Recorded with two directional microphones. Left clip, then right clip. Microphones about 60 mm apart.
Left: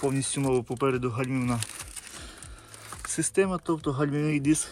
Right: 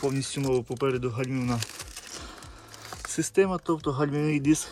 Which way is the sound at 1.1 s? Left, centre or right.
Right.